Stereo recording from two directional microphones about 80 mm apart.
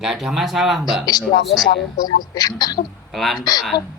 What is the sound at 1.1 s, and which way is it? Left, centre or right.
Speech, left.